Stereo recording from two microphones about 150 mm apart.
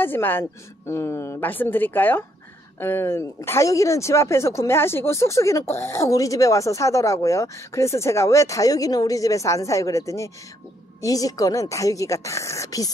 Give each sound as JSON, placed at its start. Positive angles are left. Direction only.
{"t": 0.0, "sound": "a woman's voice", "side_deg": 15}